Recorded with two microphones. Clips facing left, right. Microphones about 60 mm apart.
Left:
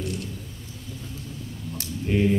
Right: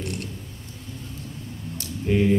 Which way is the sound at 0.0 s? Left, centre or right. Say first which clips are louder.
Even; right.